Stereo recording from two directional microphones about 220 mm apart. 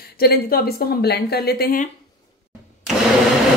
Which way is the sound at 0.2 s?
45° left (ahead or behind).